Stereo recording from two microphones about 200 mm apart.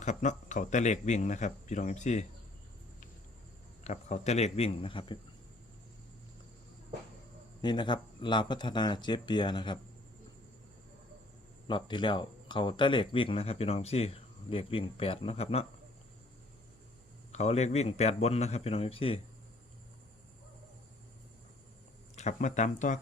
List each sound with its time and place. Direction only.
0.0 s speech: 35° left (ahead or behind)
3.8 s speech: 35° left (ahead or behind)
7.6 s speech: 20° left (ahead or behind)
11.7 s speech: 25° left (ahead or behind)
17.3 s speech: 35° left (ahead or behind)
22.1 s speech: 35° left (ahead or behind)